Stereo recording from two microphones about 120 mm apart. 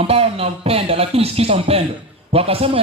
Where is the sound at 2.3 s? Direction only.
55° right (ahead or behind).